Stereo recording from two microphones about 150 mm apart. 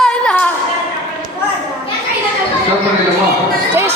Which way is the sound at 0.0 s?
5° left (ahead or behind).